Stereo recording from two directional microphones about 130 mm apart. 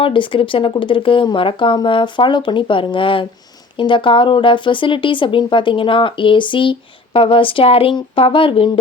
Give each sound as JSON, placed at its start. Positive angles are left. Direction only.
{"t": 0.0, "sound": "speech", "side_deg": 40}